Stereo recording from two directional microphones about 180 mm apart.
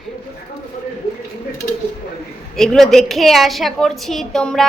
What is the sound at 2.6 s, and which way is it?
A woman's voice, centre (ahead or behind).